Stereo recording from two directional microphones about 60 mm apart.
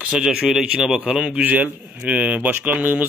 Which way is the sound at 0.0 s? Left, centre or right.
Centre.